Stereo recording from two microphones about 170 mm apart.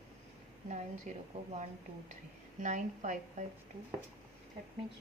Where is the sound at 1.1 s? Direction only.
45° right (ahead or behind).